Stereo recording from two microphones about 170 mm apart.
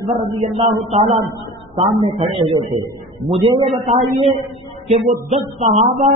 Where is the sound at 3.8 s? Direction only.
45° right (ahead or behind).